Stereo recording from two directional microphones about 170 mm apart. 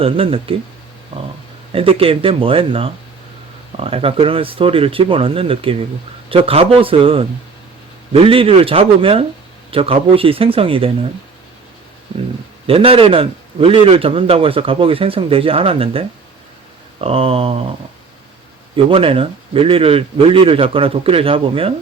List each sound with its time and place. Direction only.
0.0 s a man's voice: 35° right (ahead or behind)
1.7 s a man's voice: 35° right (ahead or behind)
12.6 s a man's voice: 35° right (ahead or behind)
18.9 s a man's voice: 35° right (ahead or behind)